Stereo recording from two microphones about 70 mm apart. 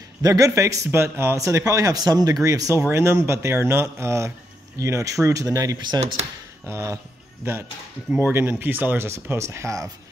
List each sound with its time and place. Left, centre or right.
0.2 s speech: right
1.4 s speech: right
2.9 s speech: right
5.8 s speech: right
6.7 s speech: right
8.2 s speech: right